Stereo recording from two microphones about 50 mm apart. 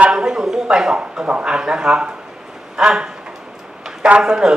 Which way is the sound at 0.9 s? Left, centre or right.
Right.